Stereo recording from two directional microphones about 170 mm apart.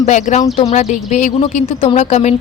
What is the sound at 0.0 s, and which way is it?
Speech, 45° left (ahead or behind).